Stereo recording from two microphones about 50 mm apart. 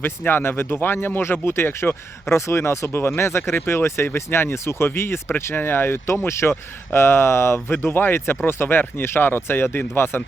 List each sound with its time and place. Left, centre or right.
0.0 s speech: left
2.3 s speech: left